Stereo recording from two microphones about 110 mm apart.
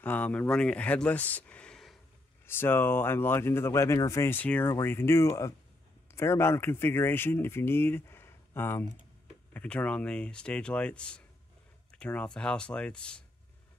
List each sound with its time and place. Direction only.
0.0 s speech: 15° left (ahead or behind)
2.4 s speech: 20° left (ahead or behind)